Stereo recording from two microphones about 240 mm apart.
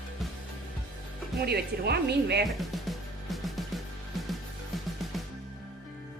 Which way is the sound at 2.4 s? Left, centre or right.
Centre.